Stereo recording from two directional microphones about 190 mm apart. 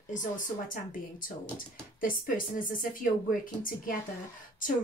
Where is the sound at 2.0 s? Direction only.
45° left (ahead or behind).